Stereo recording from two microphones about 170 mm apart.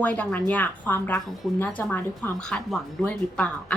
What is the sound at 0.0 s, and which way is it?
Speech, 10° left (ahead or behind).